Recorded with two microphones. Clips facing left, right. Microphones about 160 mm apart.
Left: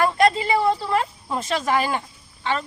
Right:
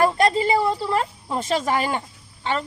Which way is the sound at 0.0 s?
30° right (ahead or behind).